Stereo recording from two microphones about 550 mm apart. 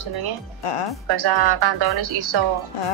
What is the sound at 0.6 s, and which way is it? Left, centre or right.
Speech, left.